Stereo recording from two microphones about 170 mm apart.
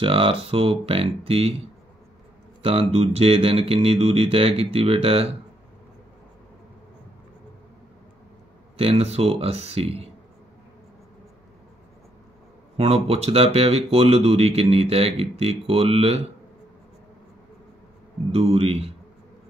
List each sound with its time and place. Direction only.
0.0 s speech: 35° right (ahead or behind)
2.6 s speech: 35° right (ahead or behind)
8.7 s speech: 35° right (ahead or behind)
12.7 s speech: 35° right (ahead or behind)
18.3 s speech: 35° right (ahead or behind)